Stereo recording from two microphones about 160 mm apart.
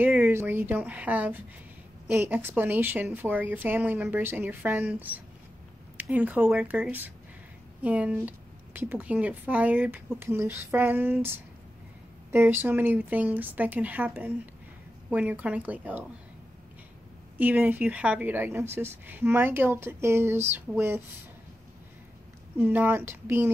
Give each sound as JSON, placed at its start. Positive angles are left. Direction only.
{"t": 0.0, "sound": "a woman's voice", "side_deg": -10}
{"t": 17.4, "sound": "a woman's voice", "side_deg": -10}
{"t": 22.6, "sound": "a woman's voice", "side_deg": -10}